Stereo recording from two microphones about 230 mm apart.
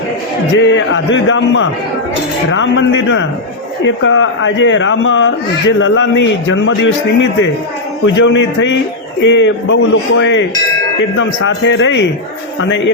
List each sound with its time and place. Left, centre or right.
0.5 s a man's voice: left